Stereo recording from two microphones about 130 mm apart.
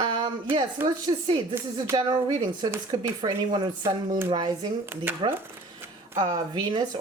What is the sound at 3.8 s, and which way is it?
Speech, 25° right (ahead or behind).